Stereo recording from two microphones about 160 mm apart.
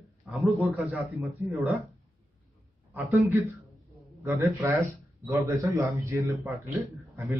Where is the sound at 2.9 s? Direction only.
15° right (ahead or behind).